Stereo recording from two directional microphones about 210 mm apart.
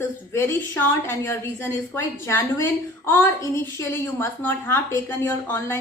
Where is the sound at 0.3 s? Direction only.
10° left (ahead or behind).